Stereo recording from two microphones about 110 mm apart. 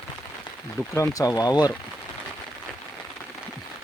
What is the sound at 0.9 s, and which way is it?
Speech, 30° left (ahead or behind).